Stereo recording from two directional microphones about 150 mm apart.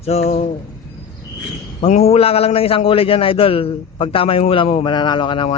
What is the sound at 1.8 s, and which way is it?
A man's voice, 50° left (ahead or behind).